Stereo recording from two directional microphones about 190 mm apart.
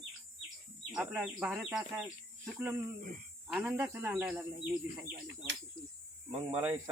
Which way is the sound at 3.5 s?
5° right (ahead or behind).